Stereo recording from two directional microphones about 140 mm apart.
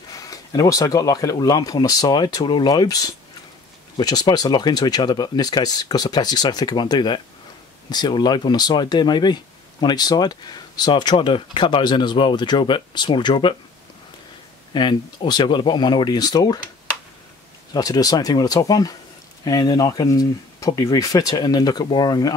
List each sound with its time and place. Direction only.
0.1 s speech: 25° left (ahead or behind)
14.7 s speech: 35° left (ahead or behind)
17.7 s speech: 25° left (ahead or behind)